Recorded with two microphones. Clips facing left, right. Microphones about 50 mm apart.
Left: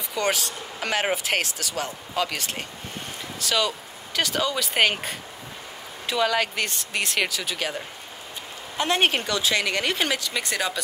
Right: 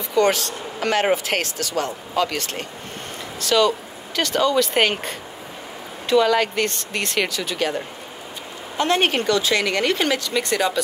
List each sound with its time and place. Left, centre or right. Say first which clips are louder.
0.1 s speech: right 7 dB; centre
8.7 s speech: right 3 dB; centre